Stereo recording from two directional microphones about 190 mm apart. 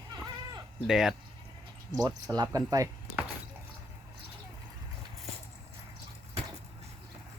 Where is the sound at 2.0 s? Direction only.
20° right (ahead or behind).